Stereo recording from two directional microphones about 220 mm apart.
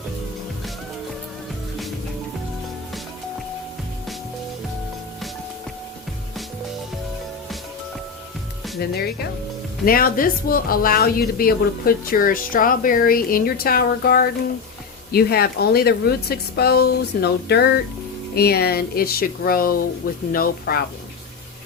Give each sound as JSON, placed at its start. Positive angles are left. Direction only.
{"t": 8.8, "sound": "speech", "side_deg": 45}